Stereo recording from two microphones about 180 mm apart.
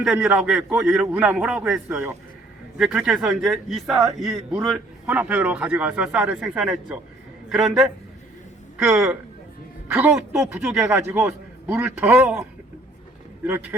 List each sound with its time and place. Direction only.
0.0 s a man's voice: 5° right (ahead or behind)
4.3 s a man's voice: 20° right (ahead or behind)
4.7 s a man's voice: 10° right (ahead or behind)
9.9 s a man's voice: 5° right (ahead or behind)